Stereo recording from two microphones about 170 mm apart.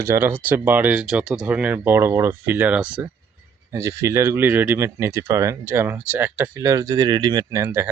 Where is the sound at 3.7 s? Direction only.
15° right (ahead or behind).